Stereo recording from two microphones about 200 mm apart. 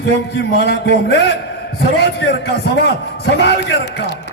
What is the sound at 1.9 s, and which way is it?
A man's voice, 60° left (ahead or behind).